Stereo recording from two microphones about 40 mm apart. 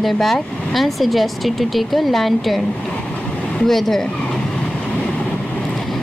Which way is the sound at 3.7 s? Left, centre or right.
Centre.